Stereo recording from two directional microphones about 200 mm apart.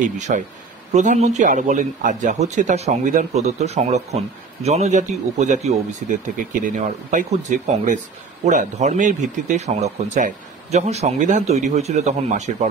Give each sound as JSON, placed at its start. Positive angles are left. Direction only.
{"t": 0.3, "sound": "speech", "side_deg": -40}